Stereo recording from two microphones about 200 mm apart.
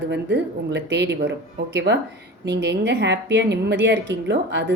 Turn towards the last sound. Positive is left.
turn(degrees=-60)  # may be behind; listen again after turning